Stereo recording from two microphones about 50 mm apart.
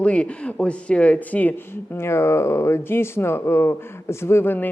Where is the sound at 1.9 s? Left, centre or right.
Left.